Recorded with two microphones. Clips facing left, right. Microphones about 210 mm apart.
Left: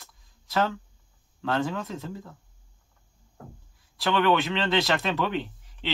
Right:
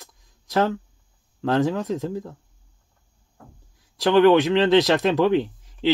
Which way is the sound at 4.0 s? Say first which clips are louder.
Right 8 dB; 45° right (ahead or behind).